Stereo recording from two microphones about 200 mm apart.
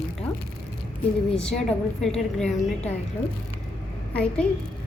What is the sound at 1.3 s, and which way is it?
A woman's voice, 5° left (ahead or behind).